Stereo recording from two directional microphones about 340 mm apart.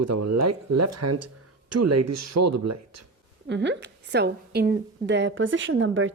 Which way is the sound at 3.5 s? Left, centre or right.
Right.